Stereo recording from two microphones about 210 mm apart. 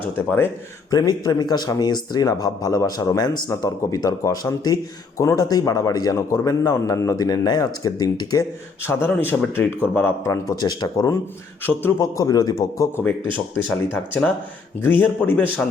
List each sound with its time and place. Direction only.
0.2 s a man's voice: 10° left (ahead or behind)